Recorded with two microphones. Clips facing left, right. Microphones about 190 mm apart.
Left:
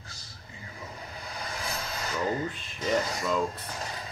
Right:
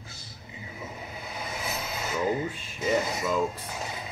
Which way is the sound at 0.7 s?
5° right (ahead or behind).